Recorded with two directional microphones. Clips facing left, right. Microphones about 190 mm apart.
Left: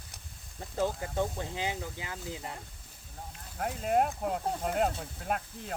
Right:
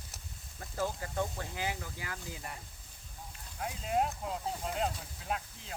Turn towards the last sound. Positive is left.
turn(degrees=55)  # may be behind; listen again after turning